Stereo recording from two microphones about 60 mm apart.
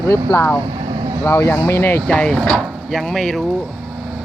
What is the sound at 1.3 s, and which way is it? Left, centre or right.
Speech, left.